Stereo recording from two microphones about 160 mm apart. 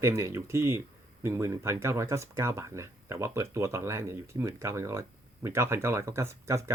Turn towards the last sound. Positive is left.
turn(degrees=-20)  # may be behind; listen again after turning